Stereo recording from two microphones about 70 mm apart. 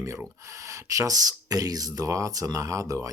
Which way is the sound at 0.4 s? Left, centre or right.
Right.